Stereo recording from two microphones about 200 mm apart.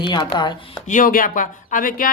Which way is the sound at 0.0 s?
25° left (ahead or behind).